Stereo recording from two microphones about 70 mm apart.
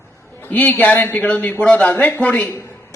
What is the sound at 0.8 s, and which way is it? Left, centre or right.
A man's voice, left.